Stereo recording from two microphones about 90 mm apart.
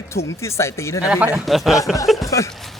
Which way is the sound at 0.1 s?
30° left (ahead or behind).